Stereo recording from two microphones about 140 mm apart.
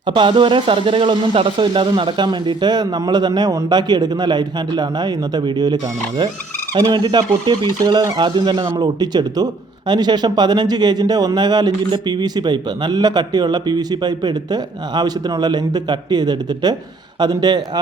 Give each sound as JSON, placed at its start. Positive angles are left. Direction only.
{"t": 0.0, "sound": "speech", "side_deg": -35}